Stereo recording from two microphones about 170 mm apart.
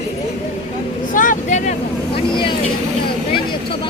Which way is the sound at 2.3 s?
30° left (ahead or behind).